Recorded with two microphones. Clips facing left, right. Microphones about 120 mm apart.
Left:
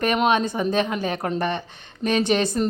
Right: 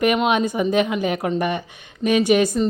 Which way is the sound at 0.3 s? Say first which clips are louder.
Right 1 dB; 15° right (ahead or behind).